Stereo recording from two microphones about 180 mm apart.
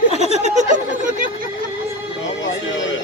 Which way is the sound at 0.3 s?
40° right (ahead or behind).